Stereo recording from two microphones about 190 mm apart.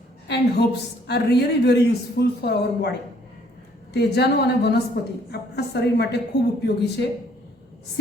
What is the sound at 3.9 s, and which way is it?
A woman's voice, 60° left (ahead or behind).